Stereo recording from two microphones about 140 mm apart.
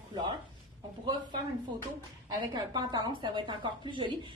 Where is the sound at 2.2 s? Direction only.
30° right (ahead or behind).